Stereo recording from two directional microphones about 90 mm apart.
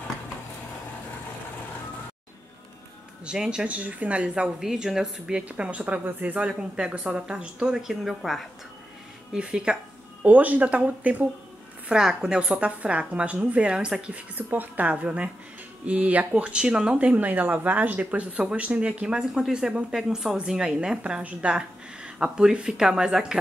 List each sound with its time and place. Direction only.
3.3 s speech: 10° right (ahead or behind)